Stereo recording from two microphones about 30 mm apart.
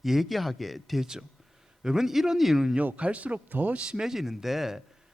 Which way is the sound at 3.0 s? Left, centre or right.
Right.